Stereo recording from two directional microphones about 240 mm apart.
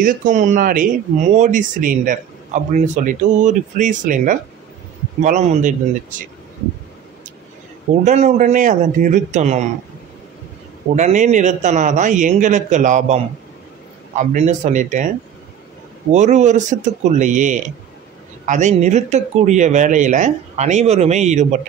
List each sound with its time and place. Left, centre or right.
0.0 s speech: right
7.9 s speech: right
11.0 s speech: right
16.1 s speech: right